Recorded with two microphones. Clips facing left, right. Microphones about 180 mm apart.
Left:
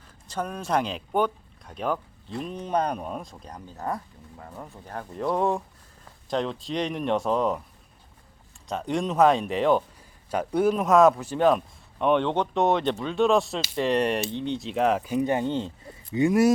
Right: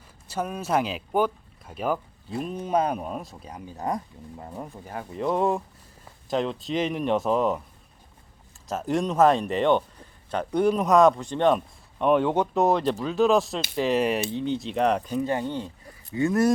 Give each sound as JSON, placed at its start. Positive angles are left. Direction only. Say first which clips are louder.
{"t": 0.3, "sound": "speech", "louder": "right 1 dB", "side_deg": -5}
{"t": 4.9, "sound": "a man's voice", "louder": "right 1 dB", "side_deg": -5}
{"t": 8.6, "sound": "a man's voice", "louder": "right 2 dB", "side_deg": 0}
{"t": 15.1, "sound": "speech", "louder": "left 2 dB", "side_deg": 20}